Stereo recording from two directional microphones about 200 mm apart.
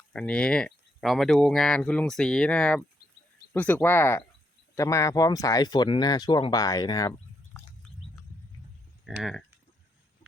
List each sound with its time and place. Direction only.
0.1 s speech: 5° left (ahead or behind)
7.5 s bird: centre (ahead or behind)
9.0 s speech: centre (ahead or behind)